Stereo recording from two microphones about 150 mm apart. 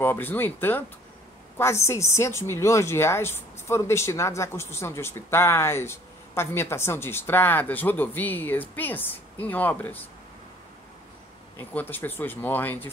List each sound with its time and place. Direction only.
0.0 s a woman's voice: 15° left (ahead or behind)
11.5 s a woman's voice: 15° left (ahead or behind)